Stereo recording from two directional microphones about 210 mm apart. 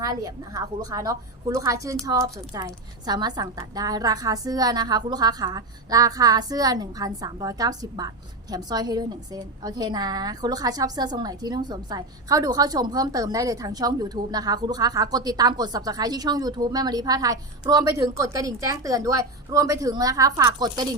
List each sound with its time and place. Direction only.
0.0 s a woman's voice: 15° right (ahead or behind)